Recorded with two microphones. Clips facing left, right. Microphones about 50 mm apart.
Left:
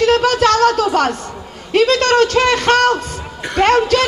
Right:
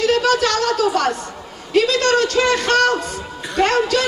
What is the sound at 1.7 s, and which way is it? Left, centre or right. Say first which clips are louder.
A man's voice: left 3 dB; left.